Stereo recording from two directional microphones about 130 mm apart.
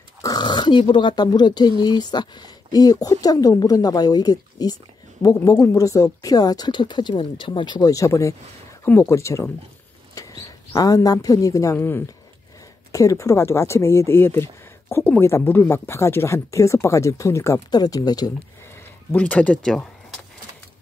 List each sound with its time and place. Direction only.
0.2 s a woman's voice: 30° left (ahead or behind)
19.1 s speech: 10° left (ahead or behind)